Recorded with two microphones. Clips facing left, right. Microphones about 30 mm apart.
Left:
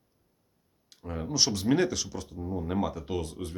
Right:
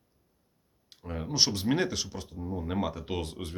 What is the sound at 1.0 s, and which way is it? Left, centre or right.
Speech, centre.